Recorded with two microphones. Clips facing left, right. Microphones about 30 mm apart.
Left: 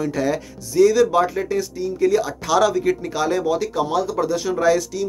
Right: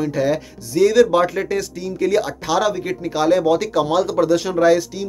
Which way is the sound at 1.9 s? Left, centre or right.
Right.